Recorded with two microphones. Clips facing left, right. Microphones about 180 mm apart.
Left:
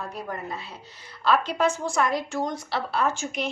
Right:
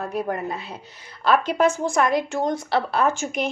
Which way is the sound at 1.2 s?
50° right (ahead or behind).